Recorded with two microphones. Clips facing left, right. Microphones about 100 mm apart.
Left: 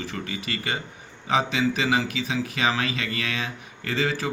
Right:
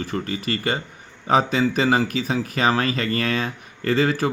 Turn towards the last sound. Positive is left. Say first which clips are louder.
# right 6 dB
turn(degrees=-50)  # may be behind; listen again after turning